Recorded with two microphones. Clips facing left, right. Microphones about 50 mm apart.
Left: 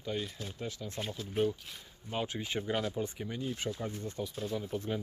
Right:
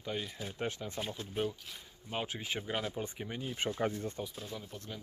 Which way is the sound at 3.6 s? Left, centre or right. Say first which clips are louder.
Right 1 dB; right.